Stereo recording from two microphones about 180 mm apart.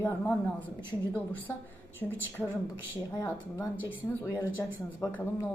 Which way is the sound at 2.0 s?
10° left (ahead or behind).